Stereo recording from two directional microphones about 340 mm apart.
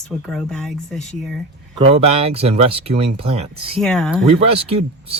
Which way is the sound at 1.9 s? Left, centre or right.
Centre.